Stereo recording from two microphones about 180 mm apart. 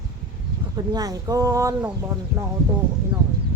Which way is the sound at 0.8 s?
20° right (ahead or behind).